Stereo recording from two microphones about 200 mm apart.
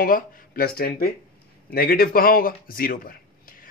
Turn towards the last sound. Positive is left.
turn(degrees=45)  # may be behind; listen again after turning